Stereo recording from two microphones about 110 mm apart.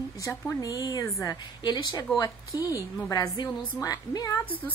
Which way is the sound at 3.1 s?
35° left (ahead or behind).